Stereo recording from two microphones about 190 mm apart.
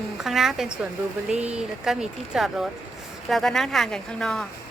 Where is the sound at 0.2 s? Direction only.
Centre (ahead or behind).